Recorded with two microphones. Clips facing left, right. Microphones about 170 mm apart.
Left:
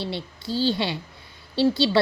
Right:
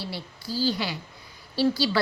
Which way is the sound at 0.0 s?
25° left (ahead or behind).